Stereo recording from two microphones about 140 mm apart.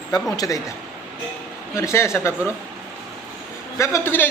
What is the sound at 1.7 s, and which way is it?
Speech, 20° left (ahead or behind).